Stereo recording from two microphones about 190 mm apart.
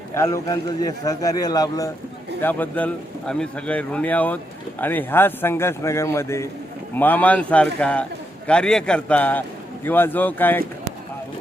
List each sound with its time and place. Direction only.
0.1 s a man's voice: 15° left (ahead or behind)
2.4 s a man's voice: 10° left (ahead or behind)